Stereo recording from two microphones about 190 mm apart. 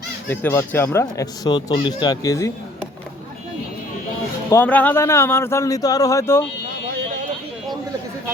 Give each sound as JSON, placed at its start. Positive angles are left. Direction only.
{"t": 0.3, "sound": "speech", "side_deg": 10}
{"t": 4.5, "sound": "speech", "side_deg": 10}